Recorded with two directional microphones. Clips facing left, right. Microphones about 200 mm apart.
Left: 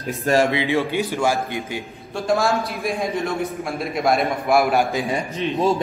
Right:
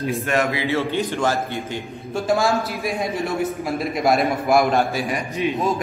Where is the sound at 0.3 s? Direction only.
30° left (ahead or behind).